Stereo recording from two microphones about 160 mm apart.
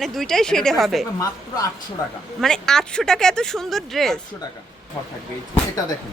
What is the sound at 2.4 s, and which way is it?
Speech, 5° left (ahead or behind).